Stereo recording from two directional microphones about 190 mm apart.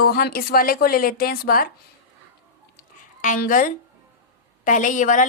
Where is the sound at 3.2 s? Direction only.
45° left (ahead or behind).